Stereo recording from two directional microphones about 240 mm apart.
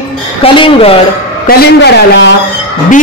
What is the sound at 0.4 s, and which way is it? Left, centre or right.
Speech, left.